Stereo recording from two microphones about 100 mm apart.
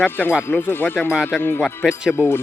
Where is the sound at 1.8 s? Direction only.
5° right (ahead or behind).